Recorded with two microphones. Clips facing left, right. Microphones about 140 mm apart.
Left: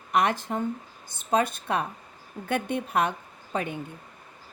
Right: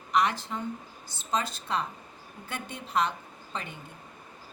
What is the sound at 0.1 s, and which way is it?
A woman's voice, 55° left (ahead or behind).